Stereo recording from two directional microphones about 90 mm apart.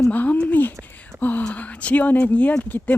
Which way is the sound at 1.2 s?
20° left (ahead or behind).